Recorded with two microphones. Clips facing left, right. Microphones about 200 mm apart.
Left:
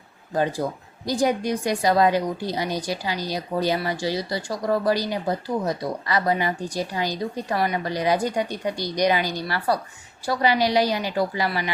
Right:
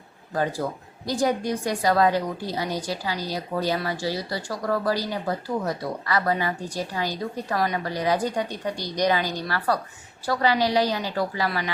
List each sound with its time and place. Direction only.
0.6 s speech: 20° left (ahead or behind)